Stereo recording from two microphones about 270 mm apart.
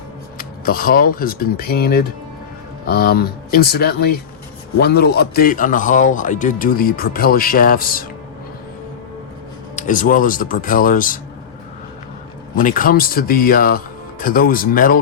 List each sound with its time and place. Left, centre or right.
0.3 s a sound: left
1.1 s a man's voice: left
9.7 s a man's voice: left
12.5 s a man's voice: left